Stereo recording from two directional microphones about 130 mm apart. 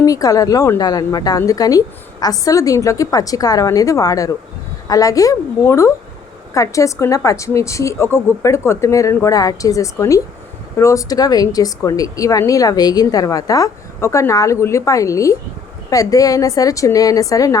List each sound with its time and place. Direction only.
0.0 s a woman's voice: 25° left (ahead or behind)